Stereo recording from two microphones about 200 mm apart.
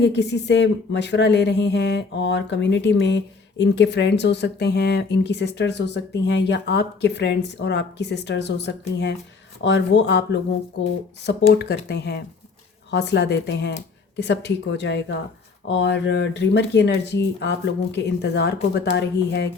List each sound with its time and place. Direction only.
0.0 s speech: 55° left (ahead or behind)